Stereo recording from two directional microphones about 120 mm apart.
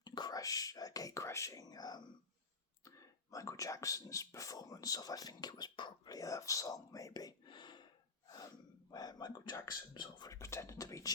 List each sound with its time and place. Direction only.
0.0 s whispering: 35° left (ahead or behind)
2.8 s speech: 30° left (ahead or behind)
8.9 s speech: 35° left (ahead or behind)
10.3 s speech: 25° left (ahead or behind)